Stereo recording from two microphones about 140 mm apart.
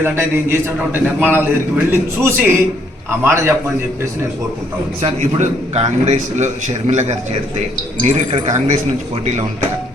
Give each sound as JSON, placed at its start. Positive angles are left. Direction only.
{"t": 0.0, "sound": "a man's voice", "side_deg": -15}
{"t": 5.0, "sound": "a man's voice", "side_deg": -50}